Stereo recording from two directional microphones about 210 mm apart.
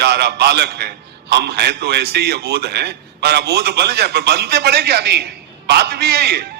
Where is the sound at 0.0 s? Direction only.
50° right (ahead or behind).